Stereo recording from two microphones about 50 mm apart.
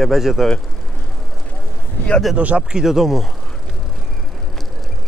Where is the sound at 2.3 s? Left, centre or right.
Right.